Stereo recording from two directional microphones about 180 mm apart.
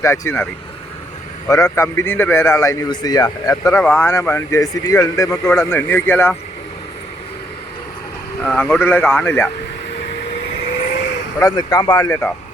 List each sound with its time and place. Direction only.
0.0 s speech: 15° left (ahead or behind)
1.5 s speech: 20° left (ahead or behind)
8.4 s speech: 10° left (ahead or behind)
11.3 s speech: 20° left (ahead or behind)